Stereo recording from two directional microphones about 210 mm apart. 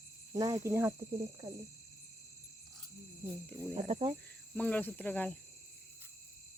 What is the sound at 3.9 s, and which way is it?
Cricket, 30° right (ahead or behind).